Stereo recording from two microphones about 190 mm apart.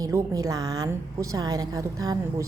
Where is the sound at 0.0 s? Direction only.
15° right (ahead or behind).